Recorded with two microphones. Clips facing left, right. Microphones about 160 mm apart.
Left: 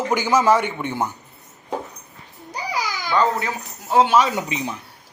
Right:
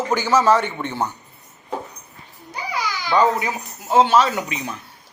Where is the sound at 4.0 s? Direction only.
10° left (ahead or behind).